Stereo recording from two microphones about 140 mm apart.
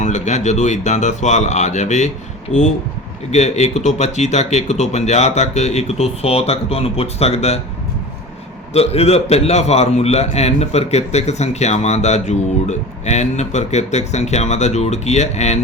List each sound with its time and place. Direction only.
0.0 s speech: 55° left (ahead or behind)
3.3 s a man's voice: 55° left (ahead or behind)
8.7 s a man's voice: 45° left (ahead or behind)